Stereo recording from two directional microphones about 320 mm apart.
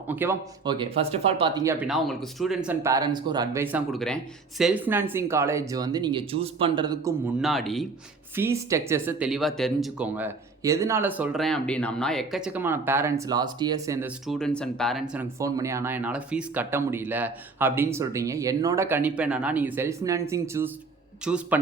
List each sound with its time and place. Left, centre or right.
0.1 s speech: centre